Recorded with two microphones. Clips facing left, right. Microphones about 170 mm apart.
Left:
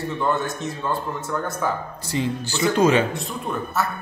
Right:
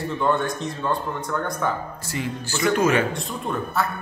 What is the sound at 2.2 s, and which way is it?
Speech, 25° left (ahead or behind).